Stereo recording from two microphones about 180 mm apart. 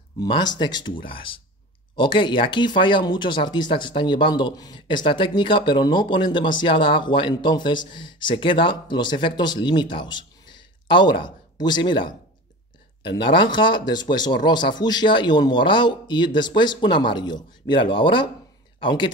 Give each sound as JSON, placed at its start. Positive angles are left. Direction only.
{"t": 0.2, "sound": "speech", "side_deg": 20}
{"t": 13.2, "sound": "speech", "side_deg": 25}